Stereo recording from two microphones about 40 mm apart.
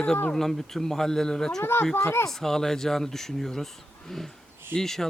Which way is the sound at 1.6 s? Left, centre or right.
Left.